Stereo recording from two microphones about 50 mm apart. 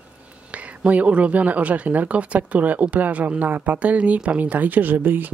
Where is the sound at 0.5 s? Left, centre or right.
Right.